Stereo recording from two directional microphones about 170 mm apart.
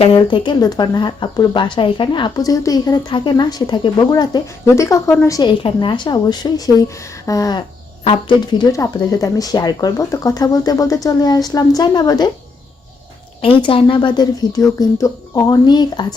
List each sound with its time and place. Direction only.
0.0 s speech: 30° left (ahead or behind)
13.4 s speech: 30° left (ahead or behind)